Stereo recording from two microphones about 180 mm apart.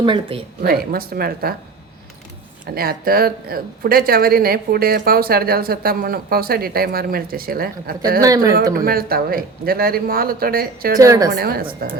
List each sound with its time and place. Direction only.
0.0 s speech: 30° right (ahead or behind)
0.6 s speech: 55° right (ahead or behind)
2.7 s speech: 55° right (ahead or behind)
8.2 s speech: 20° right (ahead or behind)
8.7 s speech: 55° right (ahead or behind)
10.9 s speech: 20° right (ahead or behind)
11.3 s speech: 55° right (ahead or behind)